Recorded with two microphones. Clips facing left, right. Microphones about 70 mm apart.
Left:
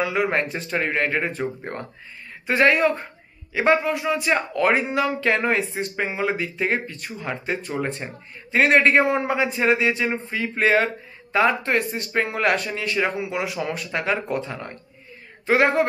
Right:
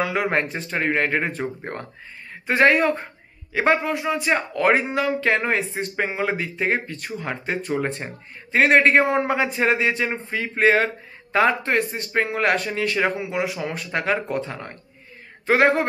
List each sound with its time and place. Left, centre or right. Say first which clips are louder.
0.0 s speech: even; right
0.4 s a man's voice: even; right
2.4 s a man's voice: right 1 dB; right
5.8 s a man's voice: right 1 dB; right
8.0 s a man's voice: even; right
13.4 s a man's voice: right 1 dB; right